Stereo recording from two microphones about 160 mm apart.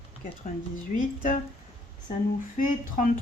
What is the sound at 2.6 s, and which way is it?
Speech, 55° left (ahead or behind).